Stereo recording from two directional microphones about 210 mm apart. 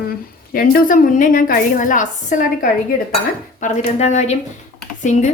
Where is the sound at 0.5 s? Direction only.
40° left (ahead or behind).